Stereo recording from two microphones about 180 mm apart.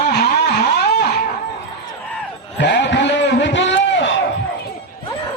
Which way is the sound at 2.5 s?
80° left.